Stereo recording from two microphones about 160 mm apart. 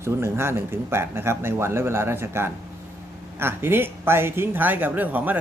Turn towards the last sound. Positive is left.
turn(degrees=-10)  # may be behind; listen again after turning